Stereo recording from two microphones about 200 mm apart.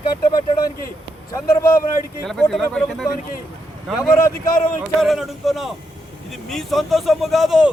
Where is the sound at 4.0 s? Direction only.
10° left (ahead or behind).